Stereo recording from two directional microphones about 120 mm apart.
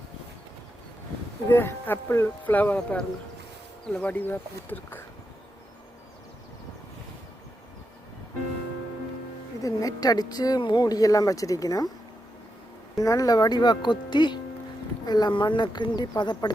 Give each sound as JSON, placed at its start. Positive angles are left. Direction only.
{"t": 1.5, "sound": "speech", "side_deg": 20}
{"t": 9.6, "sound": "speech", "side_deg": 30}
{"t": 13.0, "sound": "speech", "side_deg": 30}